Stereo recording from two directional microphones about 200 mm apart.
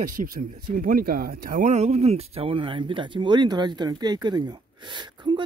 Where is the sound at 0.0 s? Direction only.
40° right (ahead or behind).